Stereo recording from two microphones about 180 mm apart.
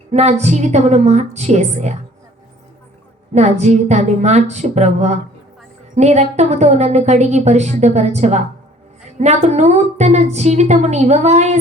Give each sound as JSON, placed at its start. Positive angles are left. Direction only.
{"t": 0.1, "sound": "a woman's voice", "side_deg": -40}
{"t": 3.3, "sound": "a woman's voice", "side_deg": -40}